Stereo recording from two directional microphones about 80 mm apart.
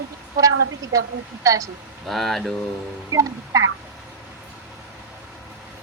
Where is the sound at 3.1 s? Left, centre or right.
Right.